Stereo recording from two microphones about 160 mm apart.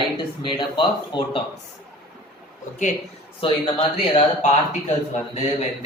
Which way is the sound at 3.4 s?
35° left (ahead or behind).